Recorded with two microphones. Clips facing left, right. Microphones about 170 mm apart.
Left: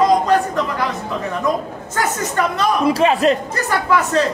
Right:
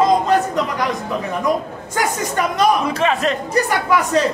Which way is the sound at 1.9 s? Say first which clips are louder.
Even; 15° right (ahead or behind).